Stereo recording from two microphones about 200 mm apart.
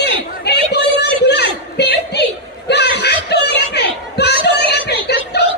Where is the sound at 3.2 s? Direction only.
55° left (ahead or behind).